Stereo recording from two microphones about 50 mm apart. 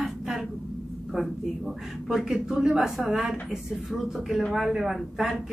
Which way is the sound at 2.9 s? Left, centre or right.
Centre.